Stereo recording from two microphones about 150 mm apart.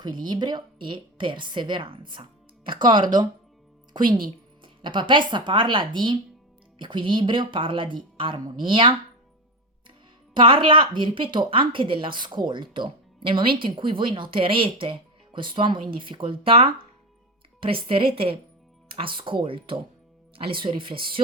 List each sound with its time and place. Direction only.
0.0 s speech: 30° right (ahead or behind)
2.6 s speech: 65° right (ahead or behind)
4.6 s speech: 30° right (ahead or behind)
10.3 s speech: 35° right (ahead or behind)